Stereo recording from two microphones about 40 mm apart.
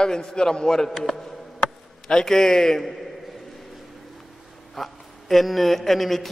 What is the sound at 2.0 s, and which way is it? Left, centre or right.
Speech, centre.